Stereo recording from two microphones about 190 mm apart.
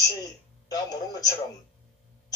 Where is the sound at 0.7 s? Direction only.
20° left (ahead or behind).